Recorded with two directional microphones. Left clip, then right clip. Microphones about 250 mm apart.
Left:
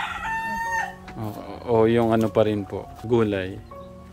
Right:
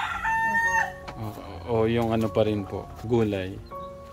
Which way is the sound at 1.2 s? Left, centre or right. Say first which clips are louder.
Left 4 dB; left.